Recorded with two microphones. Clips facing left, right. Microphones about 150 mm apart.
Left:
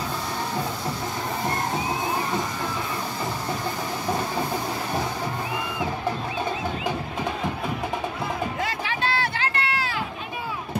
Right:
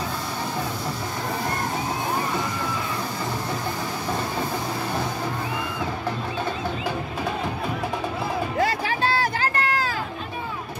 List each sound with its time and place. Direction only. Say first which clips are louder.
8.5 s run: right 5 dB; 40° right (ahead or behind)